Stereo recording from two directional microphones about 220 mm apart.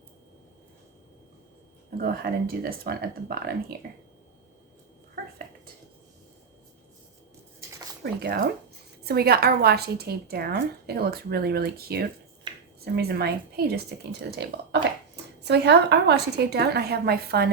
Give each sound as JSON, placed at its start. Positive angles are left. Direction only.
{"t": 2.0, "sound": "speech", "side_deg": -40}
{"t": 8.0, "sound": "speech", "side_deg": -45}